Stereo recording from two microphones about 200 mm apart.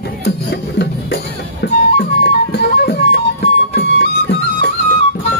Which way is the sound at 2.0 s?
55° left (ahead or behind).